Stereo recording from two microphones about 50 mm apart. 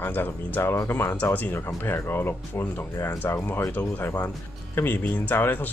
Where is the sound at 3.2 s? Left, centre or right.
Left.